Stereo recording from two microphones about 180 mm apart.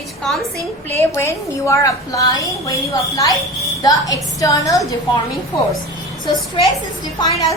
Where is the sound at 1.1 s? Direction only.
15° left (ahead or behind).